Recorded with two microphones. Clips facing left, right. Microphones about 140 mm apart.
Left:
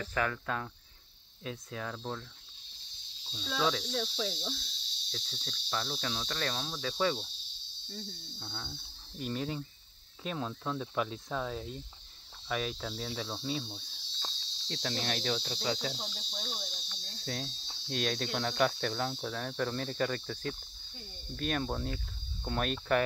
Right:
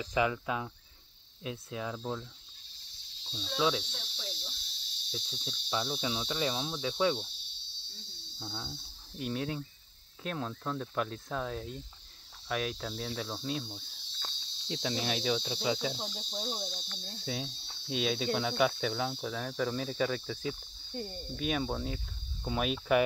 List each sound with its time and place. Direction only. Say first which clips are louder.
0.0 s cricket: right 3 dB; 10° right (ahead or behind)
1.4 s speech: right 2 dB; 5° right (ahead or behind)
3.5 s speech: right 1 dB; 5° right (ahead or behind)
3.9 s cricket: left 11 dB; 90° left
5.1 s cricket: right 3 dB; 10° right (ahead or behind)
8.4 s cricket: right 4 dB; 10° right (ahead or behind)
9.2 s speech: right 1 dB; centre (ahead or behind)
12.4 s cricket: right 1 dB; centre (ahead or behind)
16.1 s speech: right 5 dB; 20° right (ahead or behind)
17.0 s speech: right 1 dB; 5° right (ahead or behind)